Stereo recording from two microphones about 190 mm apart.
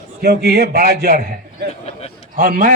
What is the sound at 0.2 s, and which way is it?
Speech, 55° right (ahead or behind).